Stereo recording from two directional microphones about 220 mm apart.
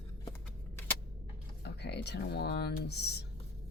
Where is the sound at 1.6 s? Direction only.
50° left (ahead or behind).